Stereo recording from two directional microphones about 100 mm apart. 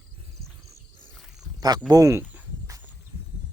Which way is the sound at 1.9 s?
35° right (ahead or behind).